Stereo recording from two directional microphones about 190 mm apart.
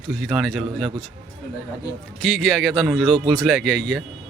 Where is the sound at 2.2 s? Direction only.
Centre (ahead or behind).